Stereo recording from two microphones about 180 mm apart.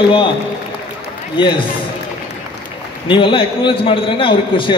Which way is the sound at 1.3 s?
25° left (ahead or behind).